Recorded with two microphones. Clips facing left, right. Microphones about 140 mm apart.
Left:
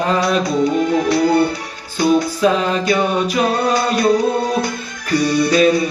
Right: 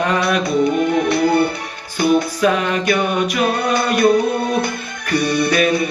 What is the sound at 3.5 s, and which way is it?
Music, 55° right (ahead or behind).